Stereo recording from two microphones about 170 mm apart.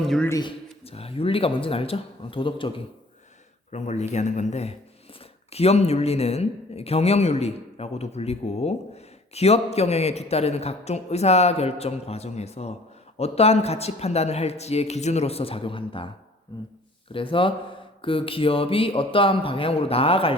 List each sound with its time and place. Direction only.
0.0 s speech: 5° left (ahead or behind)
0.3 s speech: 25° left (ahead or behind)
0.9 s a man's voice: 35° left (ahead or behind)
3.7 s a man's voice: 40° left (ahead or behind)
17.1 s a man's voice: 30° left (ahead or behind)